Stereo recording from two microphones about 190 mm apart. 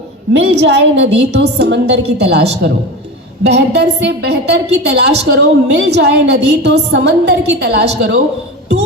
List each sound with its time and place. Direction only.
0.4 s a woman's voice: 60° right (ahead or behind)